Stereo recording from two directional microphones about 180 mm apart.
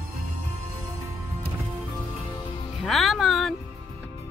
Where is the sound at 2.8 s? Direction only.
Centre (ahead or behind).